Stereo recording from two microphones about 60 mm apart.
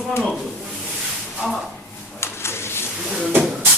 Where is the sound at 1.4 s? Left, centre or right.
Centre.